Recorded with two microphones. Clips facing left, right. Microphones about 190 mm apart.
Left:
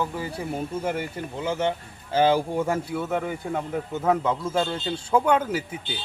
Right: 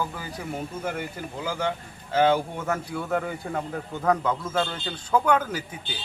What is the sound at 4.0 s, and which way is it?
A man's voice, 25° left (ahead or behind).